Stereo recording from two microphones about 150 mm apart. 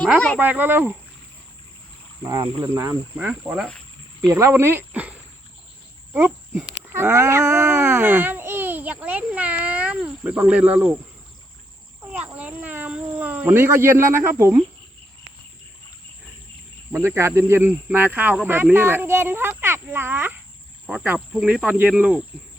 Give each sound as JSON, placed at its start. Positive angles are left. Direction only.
{"t": 0.3, "sound": "speech", "side_deg": -10}
{"t": 2.2, "sound": "speech", "side_deg": -30}
{"t": 3.2, "sound": "speech", "side_deg": -10}
{"t": 4.3, "sound": "speech", "side_deg": -20}
{"t": 6.1, "sound": "dog", "side_deg": -10}
{"t": 12.1, "sound": "cat", "side_deg": -10}
{"t": 14.1, "sound": "speech", "side_deg": -15}
{"t": 16.9, "sound": "speech", "side_deg": -15}